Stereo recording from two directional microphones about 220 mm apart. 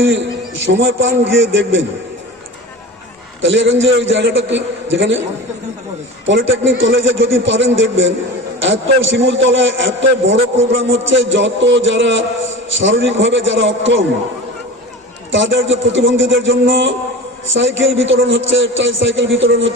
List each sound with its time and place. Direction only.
0.0 s a man's voice: 55° right (ahead or behind)
3.4 s a man's voice: 55° right (ahead or behind)
6.2 s a man's voice: 60° right (ahead or behind)
15.3 s a man's voice: 60° right (ahead or behind)